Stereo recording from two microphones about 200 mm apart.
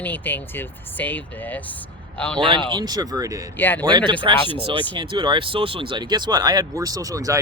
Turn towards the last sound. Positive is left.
turn(degrees=-15)  # may be behind; listen again after turning